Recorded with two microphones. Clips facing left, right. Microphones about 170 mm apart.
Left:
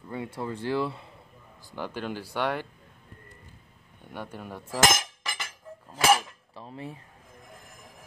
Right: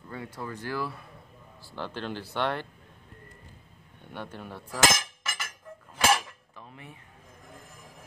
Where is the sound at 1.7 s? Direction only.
10° left (ahead or behind).